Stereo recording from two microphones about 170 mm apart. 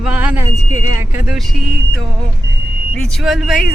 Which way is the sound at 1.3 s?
Centre (ahead or behind).